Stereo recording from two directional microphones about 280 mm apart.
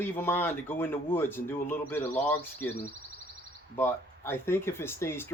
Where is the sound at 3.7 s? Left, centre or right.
Centre.